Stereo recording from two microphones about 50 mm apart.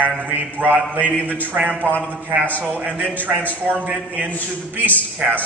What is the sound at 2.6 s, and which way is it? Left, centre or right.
A man's voice, right.